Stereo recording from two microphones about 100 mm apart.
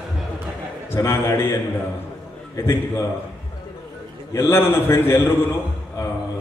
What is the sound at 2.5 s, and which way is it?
Speech, 25° left (ahead or behind).